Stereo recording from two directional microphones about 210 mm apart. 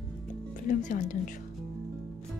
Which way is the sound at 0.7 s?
35° left (ahead or behind).